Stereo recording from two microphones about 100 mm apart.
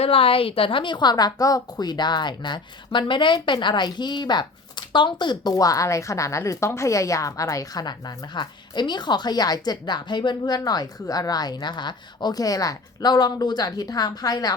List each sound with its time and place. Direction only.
0.0 s a woman's voice: 70° left (ahead or behind); by 14.5 s 40° left (ahead or behind)